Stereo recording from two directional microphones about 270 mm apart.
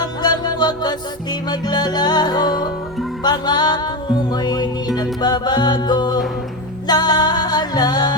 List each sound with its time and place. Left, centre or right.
0.0 s music: centre